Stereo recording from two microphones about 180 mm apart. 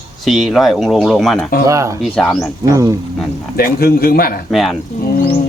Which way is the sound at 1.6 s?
15° right (ahead or behind).